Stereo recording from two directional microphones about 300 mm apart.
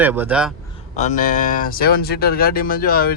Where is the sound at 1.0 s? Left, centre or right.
Left.